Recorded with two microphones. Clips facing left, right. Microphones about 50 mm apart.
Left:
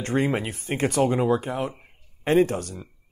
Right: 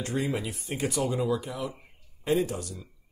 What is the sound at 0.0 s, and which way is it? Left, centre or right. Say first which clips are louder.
Speech: left 6 dB; left.